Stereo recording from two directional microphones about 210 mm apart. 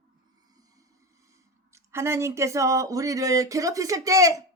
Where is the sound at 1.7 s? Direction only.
15° right (ahead or behind).